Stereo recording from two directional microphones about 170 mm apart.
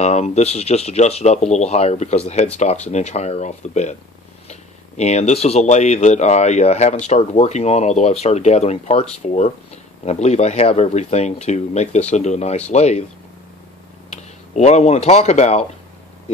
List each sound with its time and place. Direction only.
0.0 s speech: 40° left (ahead or behind)
14.1 s speech: 40° left (ahead or behind)